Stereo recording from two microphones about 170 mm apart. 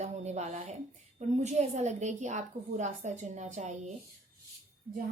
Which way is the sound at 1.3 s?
45° right (ahead or behind).